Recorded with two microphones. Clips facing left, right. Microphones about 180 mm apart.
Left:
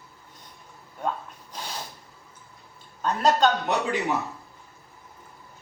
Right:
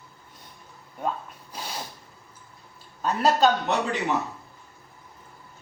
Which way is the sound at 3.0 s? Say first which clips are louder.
Even; 5° right (ahead or behind).